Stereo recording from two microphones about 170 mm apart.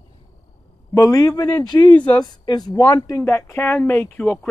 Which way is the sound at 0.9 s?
20° left (ahead or behind).